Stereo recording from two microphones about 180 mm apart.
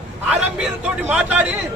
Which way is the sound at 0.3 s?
5° right (ahead or behind).